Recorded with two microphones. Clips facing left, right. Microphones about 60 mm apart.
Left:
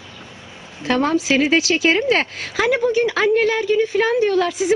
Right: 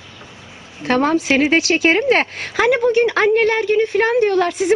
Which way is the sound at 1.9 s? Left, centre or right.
Right.